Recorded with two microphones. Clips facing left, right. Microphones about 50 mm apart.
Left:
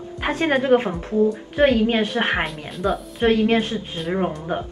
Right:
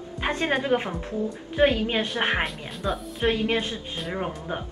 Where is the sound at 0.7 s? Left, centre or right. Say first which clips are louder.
Left 9 dB; left.